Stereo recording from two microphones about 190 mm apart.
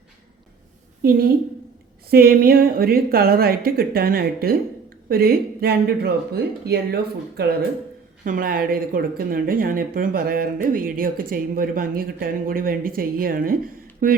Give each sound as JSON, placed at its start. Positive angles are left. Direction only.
{"t": 2.0, "sound": "speech", "side_deg": -50}
{"t": 8.2, "sound": "speech", "side_deg": -45}